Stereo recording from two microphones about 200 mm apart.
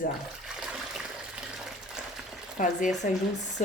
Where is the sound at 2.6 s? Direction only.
40° left (ahead or behind).